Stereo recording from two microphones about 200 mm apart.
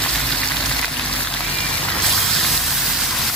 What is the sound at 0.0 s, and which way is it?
Frying, 5° left (ahead or behind).